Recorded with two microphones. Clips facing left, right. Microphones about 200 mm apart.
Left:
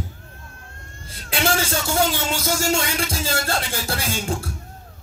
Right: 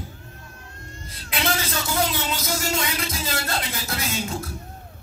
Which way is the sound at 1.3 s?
30° left (ahead or behind).